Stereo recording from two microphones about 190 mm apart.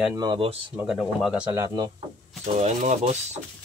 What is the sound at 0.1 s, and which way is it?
Speech, 25° right (ahead or behind).